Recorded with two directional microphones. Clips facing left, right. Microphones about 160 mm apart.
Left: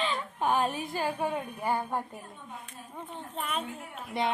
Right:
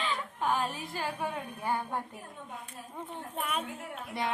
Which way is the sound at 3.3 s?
5° right (ahead or behind).